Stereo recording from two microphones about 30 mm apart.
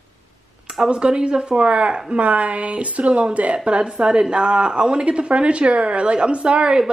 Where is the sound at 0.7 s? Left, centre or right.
Right.